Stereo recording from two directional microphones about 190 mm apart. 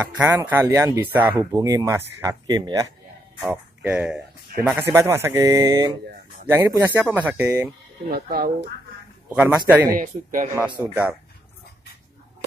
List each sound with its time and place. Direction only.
0.0 s speech: 10° right (ahead or behind)
3.4 s music: 5° right (ahead or behind)
4.7 s speech: 15° right (ahead or behind)
8.1 s speech: 50° right (ahead or behind)
9.3 s a man's voice: 5° right (ahead or behind)
9.9 s speech: 45° right (ahead or behind)
10.8 s speech: 10° right (ahead or behind)